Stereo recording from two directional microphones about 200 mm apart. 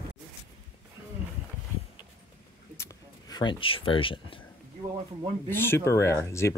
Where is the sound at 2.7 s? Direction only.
15° left (ahead or behind).